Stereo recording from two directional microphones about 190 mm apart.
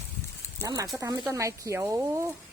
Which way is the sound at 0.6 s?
20° right (ahead or behind).